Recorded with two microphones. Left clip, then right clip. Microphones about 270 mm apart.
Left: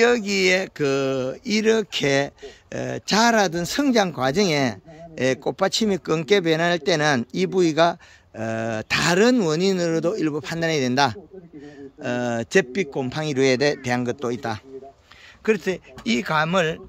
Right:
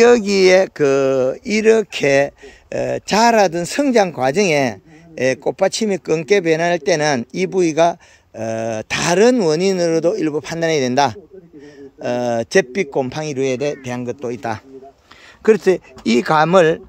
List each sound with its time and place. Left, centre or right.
0.0 s speech: right; by 13.5 s centre
13.5 s speech: left
13.8 s speech: centre
15.4 s speech: right